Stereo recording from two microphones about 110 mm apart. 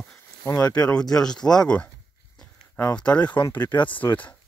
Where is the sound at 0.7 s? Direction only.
10° left (ahead or behind).